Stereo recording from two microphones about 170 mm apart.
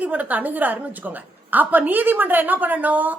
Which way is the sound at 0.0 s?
10° right (ahead or behind).